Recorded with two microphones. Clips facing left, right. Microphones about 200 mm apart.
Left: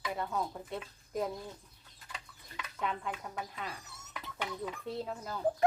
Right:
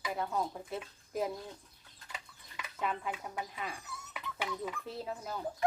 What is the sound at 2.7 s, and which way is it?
Speech, 5° right (ahead or behind).